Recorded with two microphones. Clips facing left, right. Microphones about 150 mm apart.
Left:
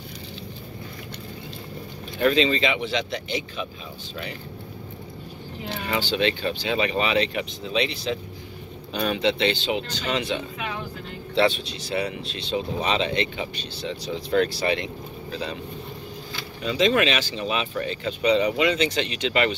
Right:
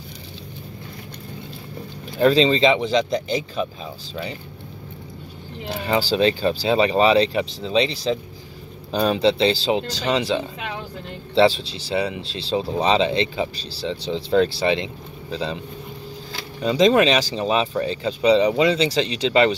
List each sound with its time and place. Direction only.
2.1 s speech: 30° right (ahead or behind)
5.9 s speech: 35° right (ahead or behind)
16.6 s speech: 35° right (ahead or behind)